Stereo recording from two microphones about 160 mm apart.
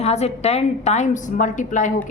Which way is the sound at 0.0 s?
40° left (ahead or behind).